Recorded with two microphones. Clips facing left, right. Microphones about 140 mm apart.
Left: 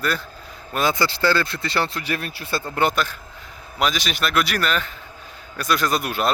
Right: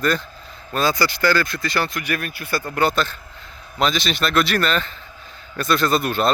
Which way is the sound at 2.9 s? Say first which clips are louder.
Right 2 dB; 10° left (ahead or behind).